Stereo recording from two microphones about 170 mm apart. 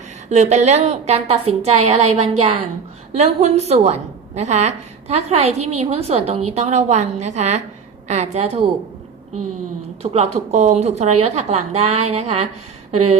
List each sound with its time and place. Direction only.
0.3 s a woman's voice: 40° right (ahead or behind)
10.0 s a woman's voice: 40° right (ahead or behind)